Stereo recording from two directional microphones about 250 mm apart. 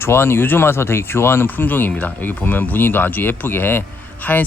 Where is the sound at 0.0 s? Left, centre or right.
Centre.